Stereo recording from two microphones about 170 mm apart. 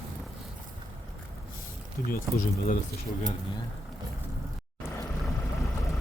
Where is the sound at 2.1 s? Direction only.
55° left (ahead or behind).